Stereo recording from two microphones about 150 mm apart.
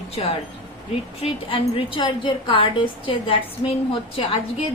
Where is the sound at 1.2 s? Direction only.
35° left (ahead or behind).